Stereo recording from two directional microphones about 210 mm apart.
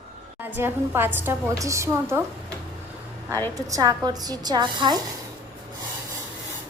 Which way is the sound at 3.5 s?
15° right (ahead or behind).